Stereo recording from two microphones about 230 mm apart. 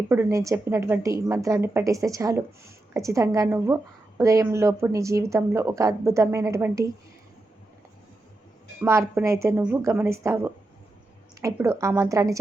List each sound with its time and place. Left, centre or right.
0.1 s a woman's voice: centre
8.8 s a woman's voice: centre